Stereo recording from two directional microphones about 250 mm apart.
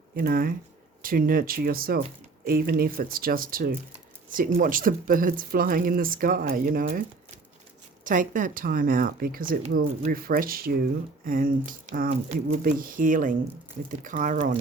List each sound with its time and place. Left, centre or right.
0.2 s speech: right